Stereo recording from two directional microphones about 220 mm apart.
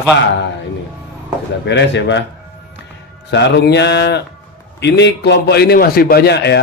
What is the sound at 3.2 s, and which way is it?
Speech, 55° left (ahead or behind).